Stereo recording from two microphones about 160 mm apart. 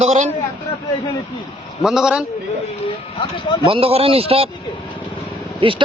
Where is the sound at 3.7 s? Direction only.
35° right (ahead or behind).